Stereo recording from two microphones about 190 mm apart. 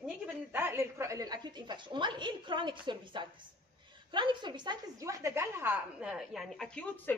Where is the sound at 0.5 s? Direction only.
10° right (ahead or behind).